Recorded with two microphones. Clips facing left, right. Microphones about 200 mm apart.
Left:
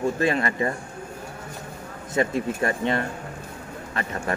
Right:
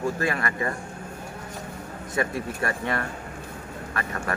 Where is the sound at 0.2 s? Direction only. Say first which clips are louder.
Left 4 dB; 25° left (ahead or behind).